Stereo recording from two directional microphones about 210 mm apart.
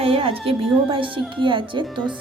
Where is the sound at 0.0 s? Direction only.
25° right (ahead or behind).